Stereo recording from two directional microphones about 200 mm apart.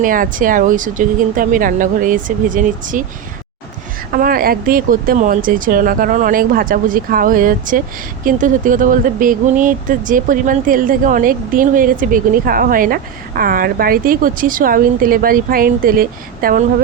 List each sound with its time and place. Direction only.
0.0 s speech: 45° right (ahead or behind)
4.1 s speech: 45° right (ahead or behind)